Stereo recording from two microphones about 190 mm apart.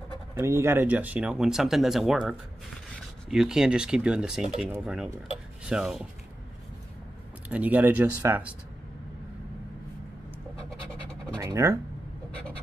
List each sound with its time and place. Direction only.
0.3 s speech: 15° right (ahead or behind)
7.4 s speech: 10° right (ahead or behind)
10.7 s scratch: 5° left (ahead or behind)
11.3 s speech: 15° right (ahead or behind)